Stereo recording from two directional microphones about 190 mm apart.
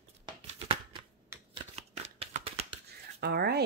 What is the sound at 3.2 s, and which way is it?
Speech, 55° right (ahead or behind).